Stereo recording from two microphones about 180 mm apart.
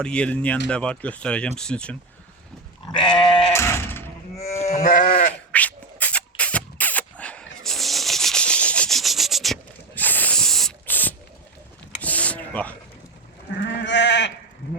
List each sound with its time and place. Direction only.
0.0 s speech: 5° left (ahead or behind)
2.9 s goat: 25° left (ahead or behind)
3.5 s sheep: 15° left (ahead or behind)
4.4 s cattle: 35° left (ahead or behind)
4.7 s sheep: 50° left (ahead or behind)
5.5 s beatboxing: 10° left (ahead or behind)
12.0 s a sound: 10° left (ahead or behind)
13.6 s goat: 80° left